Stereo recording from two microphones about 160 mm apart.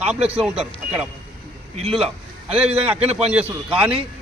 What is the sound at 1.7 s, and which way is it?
Speech, 40° right (ahead or behind).